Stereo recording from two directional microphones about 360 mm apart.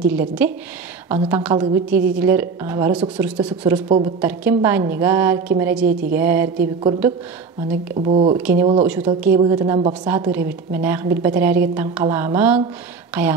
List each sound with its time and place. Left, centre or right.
0.0 s a woman's voice: centre
8.1 s speech: centre
8.4 s a woman's voice: centre